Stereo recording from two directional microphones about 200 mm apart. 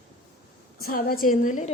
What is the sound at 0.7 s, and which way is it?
Speech, 50° left (ahead or behind).